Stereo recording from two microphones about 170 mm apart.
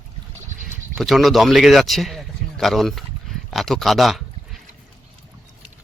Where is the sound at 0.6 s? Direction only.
Centre (ahead or behind).